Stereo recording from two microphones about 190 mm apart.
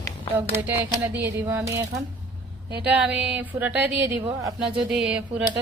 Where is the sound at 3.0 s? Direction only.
5° right (ahead or behind).